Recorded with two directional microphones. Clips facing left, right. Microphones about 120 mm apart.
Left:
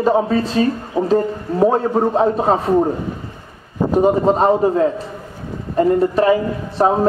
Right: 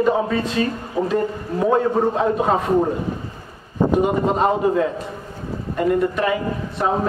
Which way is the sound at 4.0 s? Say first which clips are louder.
Left 8 dB; 35° left (ahead or behind).